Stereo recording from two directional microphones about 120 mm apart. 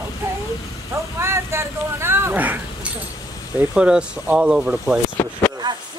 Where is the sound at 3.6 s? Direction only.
10° right (ahead or behind).